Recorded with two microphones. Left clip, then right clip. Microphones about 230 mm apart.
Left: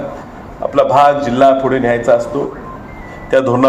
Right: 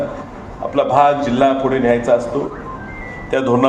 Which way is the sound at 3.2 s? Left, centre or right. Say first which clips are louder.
Left 4 dB; left.